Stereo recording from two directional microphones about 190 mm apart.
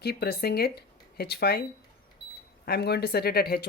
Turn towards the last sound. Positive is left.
turn(degrees=55)  # may be behind; listen again after turning